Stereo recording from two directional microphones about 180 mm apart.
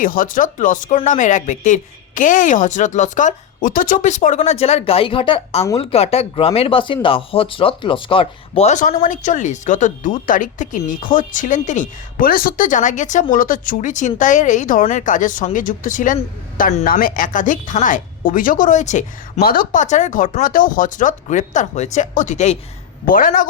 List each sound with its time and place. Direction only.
0.0 s speech: 50° left (ahead or behind)
19.4 s speech: 55° left (ahead or behind)